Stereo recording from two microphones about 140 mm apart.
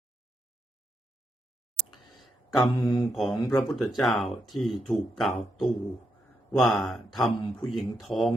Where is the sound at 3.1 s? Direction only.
Centre (ahead or behind).